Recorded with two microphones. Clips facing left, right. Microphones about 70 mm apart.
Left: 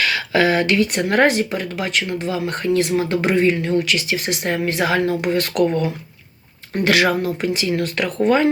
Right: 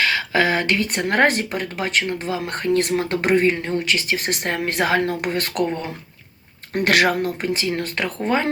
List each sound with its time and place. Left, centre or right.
0.0 s speech: right
7.2 s speech: right